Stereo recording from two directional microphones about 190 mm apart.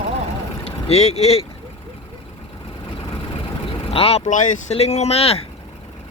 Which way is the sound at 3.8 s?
30° left (ahead or behind).